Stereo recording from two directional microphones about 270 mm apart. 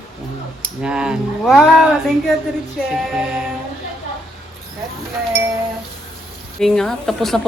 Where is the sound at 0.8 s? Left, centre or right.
Centre.